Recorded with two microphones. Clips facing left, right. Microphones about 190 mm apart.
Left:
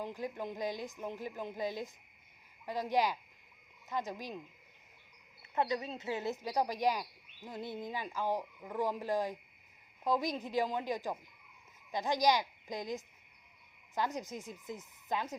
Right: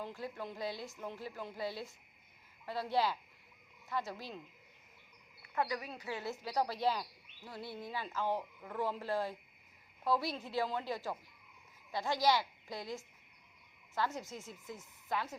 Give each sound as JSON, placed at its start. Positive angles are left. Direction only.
{"t": 0.0, "sound": "a woman's voice", "side_deg": 15}
{"t": 5.4, "sound": "a woman's voice", "side_deg": 25}